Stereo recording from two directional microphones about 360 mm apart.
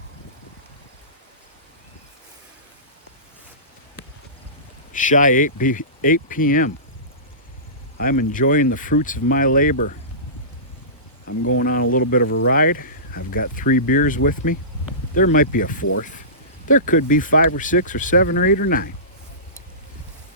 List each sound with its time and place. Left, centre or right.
4.9 s speech: left
7.9 s speech: left
11.3 s speech: left
11.6 s speech: left